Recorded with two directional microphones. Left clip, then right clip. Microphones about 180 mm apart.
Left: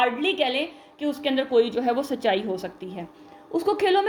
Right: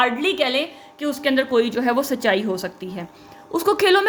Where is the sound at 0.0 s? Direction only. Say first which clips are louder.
Right 3 dB; 25° right (ahead or behind).